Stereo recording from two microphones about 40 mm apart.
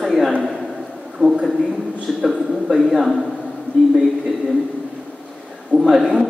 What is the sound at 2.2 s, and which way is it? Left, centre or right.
Speech, centre.